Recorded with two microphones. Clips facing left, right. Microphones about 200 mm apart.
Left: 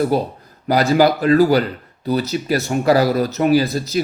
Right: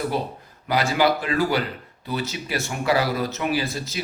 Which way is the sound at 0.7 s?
40° left (ahead or behind).